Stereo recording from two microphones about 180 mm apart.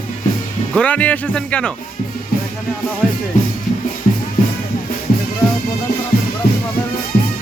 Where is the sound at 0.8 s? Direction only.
10° left (ahead or behind).